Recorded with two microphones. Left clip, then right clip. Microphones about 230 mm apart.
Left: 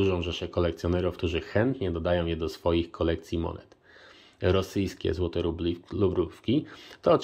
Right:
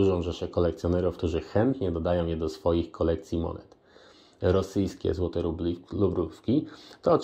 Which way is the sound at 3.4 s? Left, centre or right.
Left.